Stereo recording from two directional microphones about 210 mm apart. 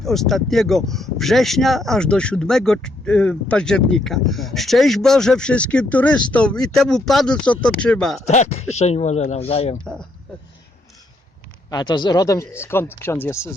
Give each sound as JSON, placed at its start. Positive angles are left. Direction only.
{"t": 0.0, "sound": "speech", "side_deg": 0}
{"t": 8.3, "sound": "speech", "side_deg": 30}
{"t": 9.8, "sound": "speech", "side_deg": 5}
{"t": 11.7, "sound": "speech", "side_deg": 20}